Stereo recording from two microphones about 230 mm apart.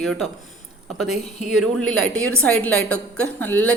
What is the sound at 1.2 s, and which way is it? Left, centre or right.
Speech, left.